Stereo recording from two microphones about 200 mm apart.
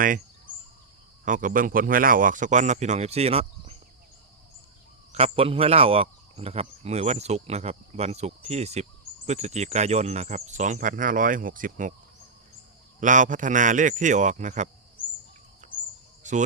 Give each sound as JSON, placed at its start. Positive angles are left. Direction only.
{"t": 1.2, "sound": "speech", "side_deg": -40}
{"t": 5.1, "sound": "speech", "side_deg": -30}
{"t": 13.0, "sound": "speech", "side_deg": -40}
{"t": 15.6, "sound": "bird", "side_deg": -40}
{"t": 16.2, "sound": "speech", "side_deg": -40}